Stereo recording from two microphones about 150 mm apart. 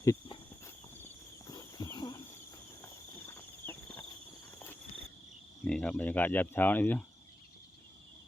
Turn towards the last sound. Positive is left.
turn(degrees=10)  # may be behind; listen again after turning